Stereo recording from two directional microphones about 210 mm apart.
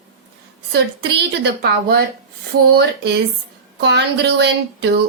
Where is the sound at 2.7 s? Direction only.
55° right (ahead or behind).